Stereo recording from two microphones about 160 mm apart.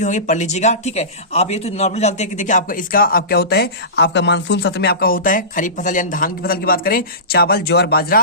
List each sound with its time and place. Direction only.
0.0 s speech: 50° left (ahead or behind); by 8.2 s 75° left (ahead or behind)